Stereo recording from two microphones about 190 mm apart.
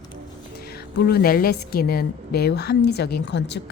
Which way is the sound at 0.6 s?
55° left (ahead or behind).